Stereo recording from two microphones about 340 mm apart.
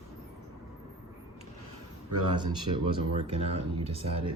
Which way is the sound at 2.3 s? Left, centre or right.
Centre.